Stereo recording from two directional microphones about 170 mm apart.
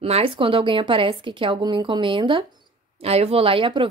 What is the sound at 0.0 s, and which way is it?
A woman's voice, 35° right (ahead or behind).